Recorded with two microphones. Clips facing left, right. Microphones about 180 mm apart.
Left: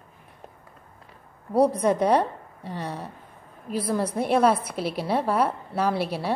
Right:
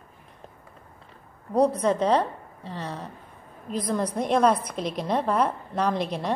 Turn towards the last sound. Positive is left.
turn(degrees=10)  # may be behind; listen again after turning